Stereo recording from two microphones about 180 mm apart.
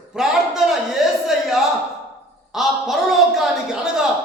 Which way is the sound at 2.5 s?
Centre (ahead or behind).